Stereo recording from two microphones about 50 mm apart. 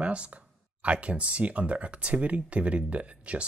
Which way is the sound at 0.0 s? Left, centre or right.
Right.